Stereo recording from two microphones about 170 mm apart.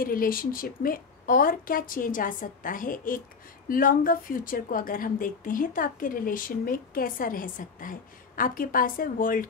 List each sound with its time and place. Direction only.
0.0 s a woman's voice: 55° left (ahead or behind)